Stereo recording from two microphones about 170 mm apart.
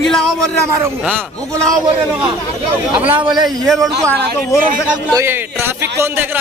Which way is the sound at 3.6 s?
Centre (ahead or behind).